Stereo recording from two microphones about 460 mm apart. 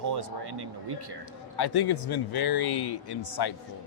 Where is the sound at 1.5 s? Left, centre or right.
Left.